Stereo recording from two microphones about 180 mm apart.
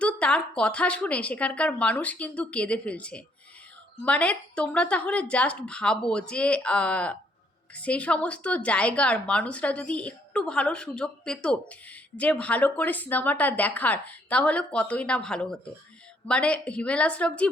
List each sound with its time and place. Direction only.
0.0 s speech: 5° left (ahead or behind)